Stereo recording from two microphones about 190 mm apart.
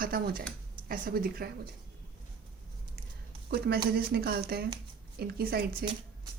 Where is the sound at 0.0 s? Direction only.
50° right (ahead or behind).